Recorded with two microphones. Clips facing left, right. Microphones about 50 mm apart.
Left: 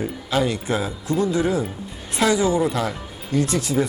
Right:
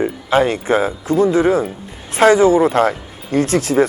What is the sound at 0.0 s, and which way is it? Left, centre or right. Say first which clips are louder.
Speech: right 7 dB; right.